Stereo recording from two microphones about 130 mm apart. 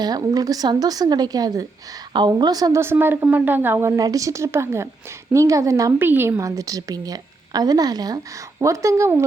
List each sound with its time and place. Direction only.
0.0 s a woman's voice: 30° right (ahead or behind)